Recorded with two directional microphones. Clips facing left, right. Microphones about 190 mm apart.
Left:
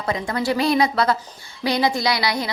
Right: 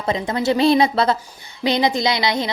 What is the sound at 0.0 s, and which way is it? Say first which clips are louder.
A woman's voice: right 3 dB; 20° right (ahead or behind).